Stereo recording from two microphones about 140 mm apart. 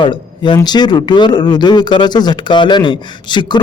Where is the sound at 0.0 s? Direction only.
35° left (ahead or behind).